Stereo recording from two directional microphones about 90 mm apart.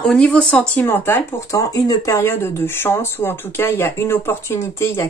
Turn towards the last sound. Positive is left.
turn(degrees=30)  # may be behind; listen again after turning